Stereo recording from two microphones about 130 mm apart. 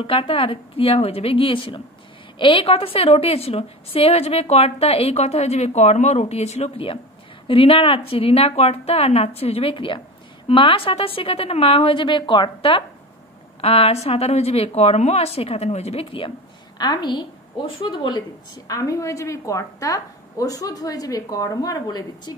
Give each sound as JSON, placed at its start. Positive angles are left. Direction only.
{"t": 0.0, "sound": "a woman's voice", "side_deg": 45}
{"t": 16.7, "sound": "a woman's voice", "side_deg": 35}